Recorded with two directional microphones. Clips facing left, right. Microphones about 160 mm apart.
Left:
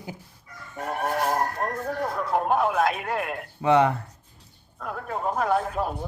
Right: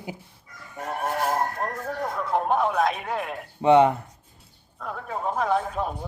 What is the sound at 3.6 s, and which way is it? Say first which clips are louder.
Speech: right 3 dB; 20° right (ahead or behind).